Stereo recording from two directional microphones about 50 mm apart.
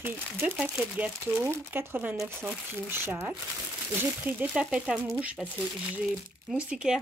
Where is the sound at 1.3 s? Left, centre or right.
Right.